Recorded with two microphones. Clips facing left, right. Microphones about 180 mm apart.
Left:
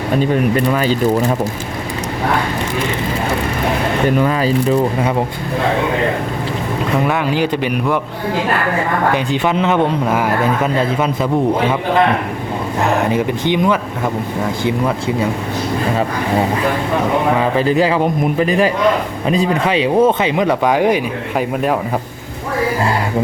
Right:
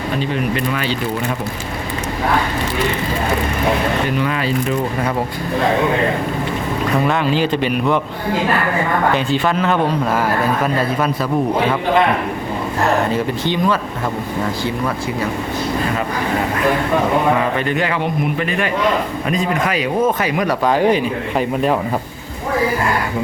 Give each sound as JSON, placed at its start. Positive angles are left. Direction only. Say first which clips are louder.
{"t": 0.2, "sound": "a man's voice", "louder": "left 6 dB", "side_deg": 40}
{"t": 4.2, "sound": "a man's voice", "louder": "left 4 dB", "side_deg": 40}
{"t": 7.0, "sound": "speech", "louder": "even", "side_deg": 15}
{"t": 9.1, "sound": "speech", "louder": "left 1 dB", "side_deg": 15}
{"t": 12.8, "sound": "speech", "louder": "left 1 dB", "side_deg": 15}
{"t": 17.6, "sound": "a man's voice", "louder": "left 5 dB", "side_deg": 35}